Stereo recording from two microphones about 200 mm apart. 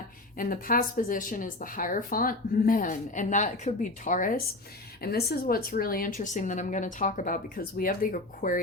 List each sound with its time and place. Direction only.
0.3 s speech: 45° left (ahead or behind)
5.0 s speech: 50° left (ahead or behind)